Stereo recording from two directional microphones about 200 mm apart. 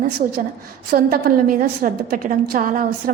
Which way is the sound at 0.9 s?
45° right (ahead or behind).